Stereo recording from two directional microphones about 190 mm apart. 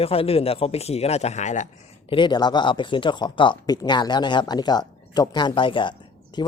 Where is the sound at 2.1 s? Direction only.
25° left (ahead or behind).